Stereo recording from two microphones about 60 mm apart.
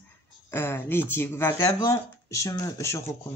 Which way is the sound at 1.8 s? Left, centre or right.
Left.